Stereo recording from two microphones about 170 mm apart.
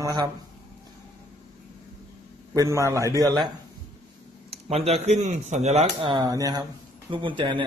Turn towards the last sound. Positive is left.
turn(degrees=-30)  # may be behind; listen again after turning